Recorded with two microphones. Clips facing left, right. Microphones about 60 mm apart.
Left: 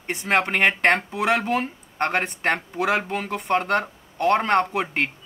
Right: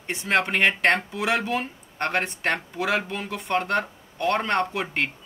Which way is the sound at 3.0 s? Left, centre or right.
Left.